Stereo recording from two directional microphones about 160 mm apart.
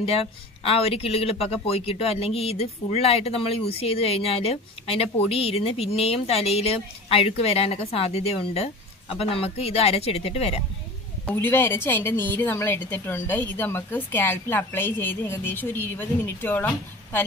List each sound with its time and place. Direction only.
0.0 s speech: 40° left (ahead or behind)
11.2 s a woman's voice: 15° left (ahead or behind)